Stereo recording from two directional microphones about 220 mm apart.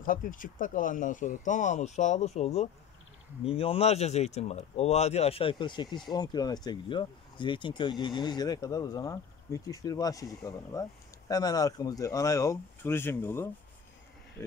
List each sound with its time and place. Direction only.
0.0 s speech: 40° left (ahead or behind); by 13.5 s 10° left (ahead or behind)